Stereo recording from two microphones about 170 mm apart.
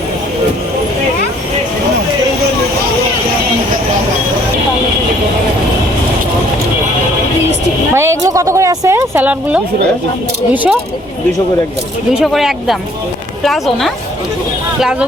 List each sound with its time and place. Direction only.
7.9 s a sound: 15° right (ahead or behind)
10.5 s speech: 10° right (ahead or behind)
12.2 s speech: centre (ahead or behind)